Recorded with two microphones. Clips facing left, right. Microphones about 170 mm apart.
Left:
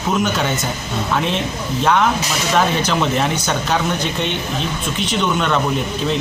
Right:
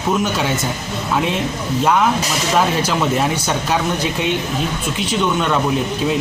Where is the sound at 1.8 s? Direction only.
5° right (ahead or behind).